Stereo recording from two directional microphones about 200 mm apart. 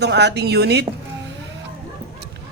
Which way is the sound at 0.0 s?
60° right (ahead or behind).